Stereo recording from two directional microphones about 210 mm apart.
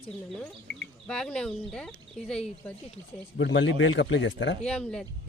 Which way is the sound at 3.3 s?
60° left (ahead or behind).